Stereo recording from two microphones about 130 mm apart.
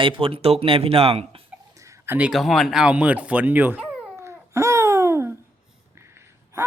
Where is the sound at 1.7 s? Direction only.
25° right (ahead or behind).